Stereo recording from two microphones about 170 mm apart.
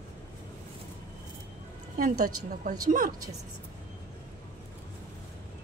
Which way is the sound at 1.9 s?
55° right (ahead or behind).